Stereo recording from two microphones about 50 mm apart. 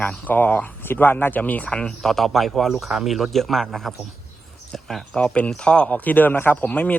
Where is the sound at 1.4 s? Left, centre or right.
Left.